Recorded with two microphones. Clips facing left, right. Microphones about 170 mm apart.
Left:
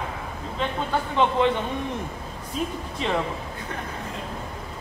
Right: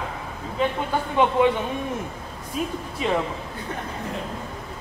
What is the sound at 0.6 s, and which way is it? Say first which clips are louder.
Speech: right 5 dB; 5° right (ahead or behind).